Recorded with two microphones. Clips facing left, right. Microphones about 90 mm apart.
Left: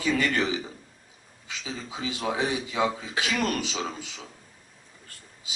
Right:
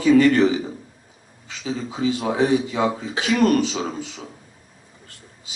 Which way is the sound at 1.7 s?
5° right (ahead or behind).